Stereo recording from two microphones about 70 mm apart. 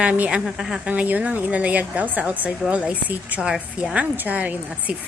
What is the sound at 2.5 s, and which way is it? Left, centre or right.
A woman's voice, centre.